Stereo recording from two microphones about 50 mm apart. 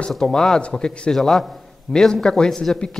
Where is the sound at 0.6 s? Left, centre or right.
Centre.